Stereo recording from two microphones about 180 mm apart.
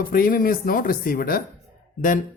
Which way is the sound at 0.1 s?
50° left (ahead or behind).